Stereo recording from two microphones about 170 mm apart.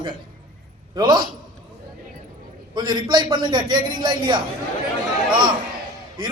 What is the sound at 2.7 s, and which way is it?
A man's voice, 25° right (ahead or behind).